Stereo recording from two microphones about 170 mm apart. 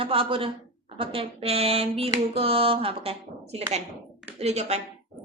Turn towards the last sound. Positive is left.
turn(degrees=-40)  # may be behind; listen again after turning